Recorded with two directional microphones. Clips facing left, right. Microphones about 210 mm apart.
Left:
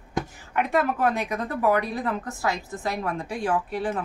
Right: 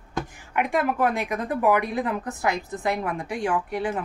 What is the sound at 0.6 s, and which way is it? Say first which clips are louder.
Speech: even; 15° right (ahead or behind).